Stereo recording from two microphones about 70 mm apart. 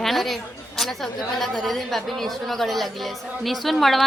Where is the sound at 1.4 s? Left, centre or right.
Centre.